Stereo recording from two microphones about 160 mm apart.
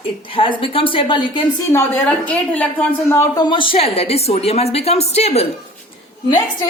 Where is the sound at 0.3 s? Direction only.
35° left (ahead or behind).